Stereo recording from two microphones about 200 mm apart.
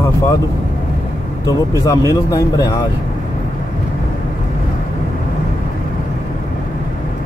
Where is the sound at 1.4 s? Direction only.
15° left (ahead or behind).